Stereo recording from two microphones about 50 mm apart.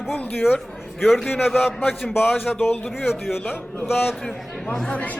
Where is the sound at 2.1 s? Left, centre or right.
Left.